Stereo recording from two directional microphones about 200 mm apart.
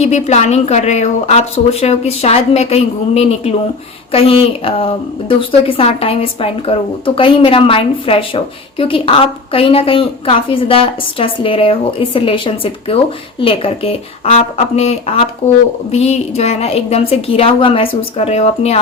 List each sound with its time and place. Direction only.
0.0 s a woman's voice: 35° left (ahead or behind)